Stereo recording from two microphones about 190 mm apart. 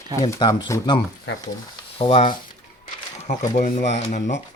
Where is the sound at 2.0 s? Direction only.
30° left (ahead or behind).